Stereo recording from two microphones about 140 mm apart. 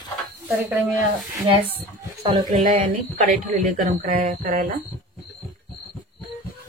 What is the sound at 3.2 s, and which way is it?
Speech, 65° right (ahead or behind).